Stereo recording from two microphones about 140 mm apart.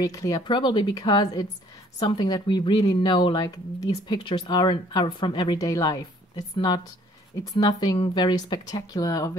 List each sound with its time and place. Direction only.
0.0 s speech: 25° left (ahead or behind)
0.5 s speech: 35° left (ahead or behind)